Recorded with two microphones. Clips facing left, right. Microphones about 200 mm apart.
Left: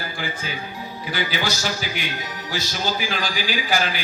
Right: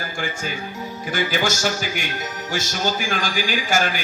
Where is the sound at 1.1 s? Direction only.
50° right (ahead or behind).